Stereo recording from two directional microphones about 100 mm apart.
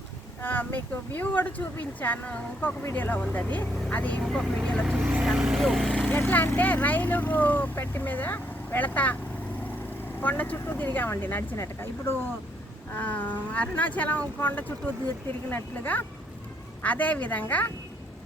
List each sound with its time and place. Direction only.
0.4 s speech: 20° left (ahead or behind)
4.2 s speech: centre (ahead or behind)
4.9 s speech: 10° right (ahead or behind)
6.1 s speech: 15° left (ahead or behind)